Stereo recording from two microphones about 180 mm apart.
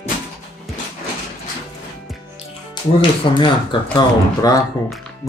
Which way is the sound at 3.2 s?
25° left (ahead or behind).